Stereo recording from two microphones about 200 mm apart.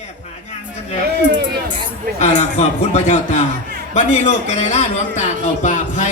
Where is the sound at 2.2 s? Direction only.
35° left (ahead or behind).